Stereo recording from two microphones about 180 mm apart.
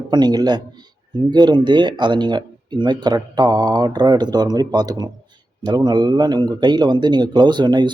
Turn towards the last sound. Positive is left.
turn(degrees=-25)  # may be behind; listen again after turning